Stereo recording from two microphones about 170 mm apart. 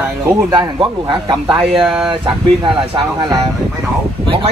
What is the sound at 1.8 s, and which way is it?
Speech, 5° right (ahead or behind).